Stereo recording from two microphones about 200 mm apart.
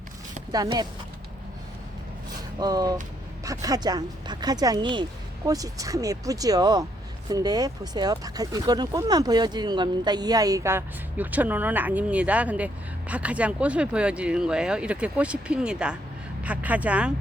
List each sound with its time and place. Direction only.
0.5 s speech: 20° right (ahead or behind)
2.6 s speech: 20° right (ahead or behind)